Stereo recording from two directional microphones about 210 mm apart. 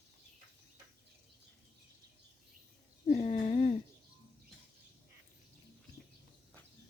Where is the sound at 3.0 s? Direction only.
35° left (ahead or behind).